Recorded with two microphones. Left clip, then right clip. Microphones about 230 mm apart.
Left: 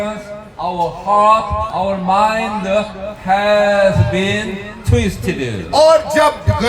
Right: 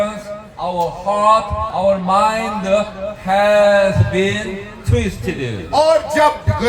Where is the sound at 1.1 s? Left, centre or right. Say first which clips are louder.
Left 2 dB; centre.